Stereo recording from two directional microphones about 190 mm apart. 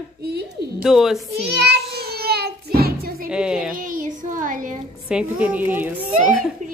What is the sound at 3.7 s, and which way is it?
A child's voice, 45° right (ahead or behind).